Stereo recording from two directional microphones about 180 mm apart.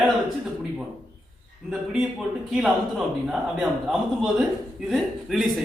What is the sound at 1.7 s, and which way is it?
Speech, 5° right (ahead or behind).